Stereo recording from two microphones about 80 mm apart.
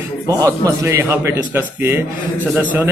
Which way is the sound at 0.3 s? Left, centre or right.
Right.